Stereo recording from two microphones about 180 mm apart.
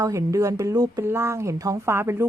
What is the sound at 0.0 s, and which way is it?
Speech, 15° right (ahead or behind).